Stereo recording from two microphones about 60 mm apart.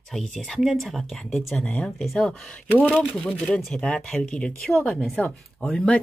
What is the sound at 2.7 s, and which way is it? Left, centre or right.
Speech, left.